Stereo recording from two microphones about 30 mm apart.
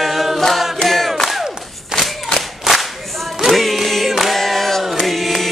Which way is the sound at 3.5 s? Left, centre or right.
Centre.